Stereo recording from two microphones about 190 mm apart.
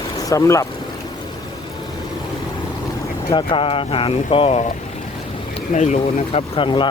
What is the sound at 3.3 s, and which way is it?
Speech, 25° left (ahead or behind).